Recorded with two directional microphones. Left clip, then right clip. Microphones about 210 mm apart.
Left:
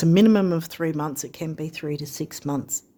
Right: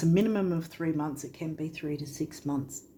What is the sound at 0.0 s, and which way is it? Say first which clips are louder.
Speech: left 8 dB; 55° left (ahead or behind).